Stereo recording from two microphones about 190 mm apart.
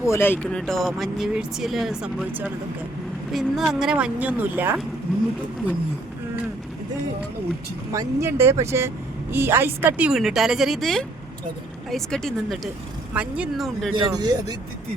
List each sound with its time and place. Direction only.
0.0 s speech: 15° left (ahead or behind); by 4.7 s 10° right (ahead or behind)
7.9 s speech: 15° right (ahead or behind)
13.9 s speech: 20° right (ahead or behind)